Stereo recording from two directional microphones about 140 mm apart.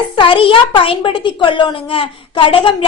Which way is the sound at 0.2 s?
40° left (ahead or behind).